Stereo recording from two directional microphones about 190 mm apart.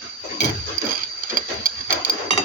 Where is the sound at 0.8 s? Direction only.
15° right (ahead or behind).